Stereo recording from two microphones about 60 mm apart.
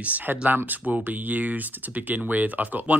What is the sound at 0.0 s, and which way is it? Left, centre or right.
Speech, right.